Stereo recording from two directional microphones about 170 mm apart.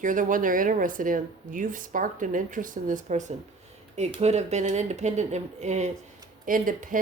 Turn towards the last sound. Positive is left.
turn(degrees=-50)  # may be behind; listen again after turning